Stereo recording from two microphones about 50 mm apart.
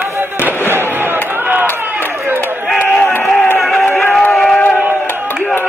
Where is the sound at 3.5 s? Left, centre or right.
Centre.